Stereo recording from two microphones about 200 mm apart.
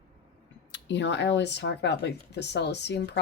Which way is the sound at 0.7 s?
65° left (ahead or behind).